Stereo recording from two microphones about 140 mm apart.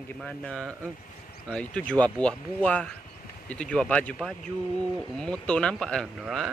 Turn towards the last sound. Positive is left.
turn(degrees=-5)  # may be behind; listen again after turning